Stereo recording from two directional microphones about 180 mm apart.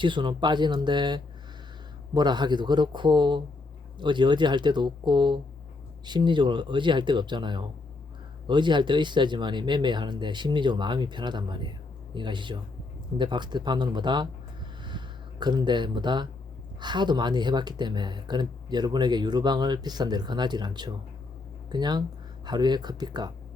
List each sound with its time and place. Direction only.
0.0 s speech: 25° right (ahead or behind)